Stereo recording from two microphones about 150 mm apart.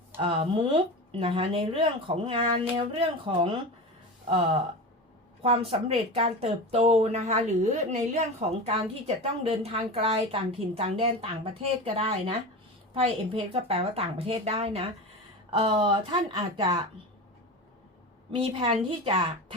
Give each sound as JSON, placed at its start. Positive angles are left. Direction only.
{"t": 0.2, "sound": "a woman's voice", "side_deg": -35}
{"t": 4.3, "sound": "a woman's voice", "side_deg": -40}
{"t": 18.3, "sound": "a woman's voice", "side_deg": -35}